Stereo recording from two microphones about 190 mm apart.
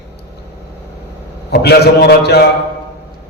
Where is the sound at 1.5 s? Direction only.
60° left (ahead or behind).